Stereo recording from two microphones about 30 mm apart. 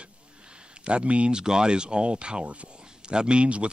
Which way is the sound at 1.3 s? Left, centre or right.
Right.